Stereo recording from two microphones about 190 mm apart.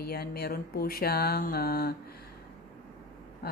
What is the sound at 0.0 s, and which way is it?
A woman's voice, 55° left (ahead or behind).